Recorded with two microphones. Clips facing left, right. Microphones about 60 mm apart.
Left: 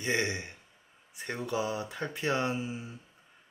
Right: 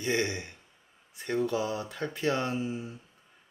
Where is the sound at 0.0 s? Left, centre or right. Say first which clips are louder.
Right 1 dB; centre.